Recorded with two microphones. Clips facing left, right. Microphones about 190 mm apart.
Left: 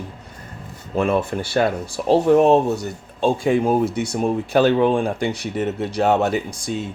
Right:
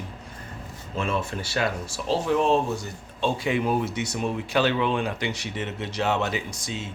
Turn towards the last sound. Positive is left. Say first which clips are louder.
# left 7 dB
turn(degrees=55)  # may be behind; listen again after turning